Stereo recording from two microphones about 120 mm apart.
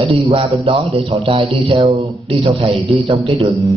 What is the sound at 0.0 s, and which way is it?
A man's voice, 50° right (ahead or behind).